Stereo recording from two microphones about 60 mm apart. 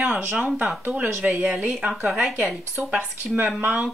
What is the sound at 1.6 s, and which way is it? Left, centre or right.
Speech, centre.